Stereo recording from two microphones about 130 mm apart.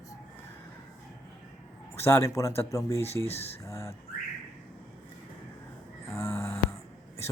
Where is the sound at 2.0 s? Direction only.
20° left (ahead or behind).